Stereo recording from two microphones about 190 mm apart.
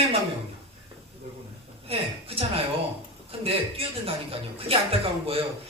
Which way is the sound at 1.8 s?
30° right (ahead or behind).